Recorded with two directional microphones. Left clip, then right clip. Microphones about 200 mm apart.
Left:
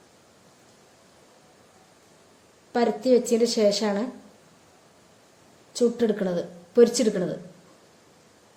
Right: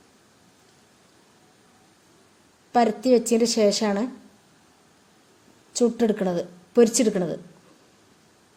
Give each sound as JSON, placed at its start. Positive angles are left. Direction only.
{"t": 2.7, "sound": "a woman's voice", "side_deg": -40}
{"t": 5.7, "sound": "a woman's voice", "side_deg": -40}